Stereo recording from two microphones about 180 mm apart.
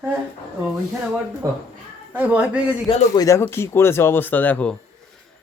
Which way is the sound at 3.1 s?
15° left (ahead or behind).